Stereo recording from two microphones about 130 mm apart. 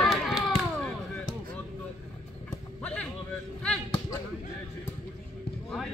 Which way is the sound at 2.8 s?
10° left (ahead or behind).